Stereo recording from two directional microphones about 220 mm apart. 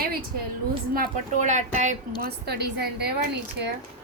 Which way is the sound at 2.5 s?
50° right (ahead or behind).